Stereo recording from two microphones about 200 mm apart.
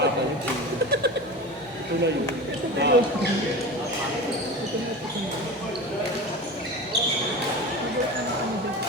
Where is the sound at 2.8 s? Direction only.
55° right (ahead or behind).